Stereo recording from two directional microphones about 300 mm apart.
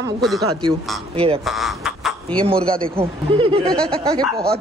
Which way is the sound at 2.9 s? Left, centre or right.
Centre.